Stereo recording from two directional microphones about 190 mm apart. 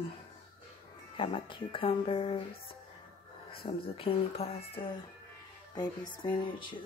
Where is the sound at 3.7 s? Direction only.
30° left (ahead or behind).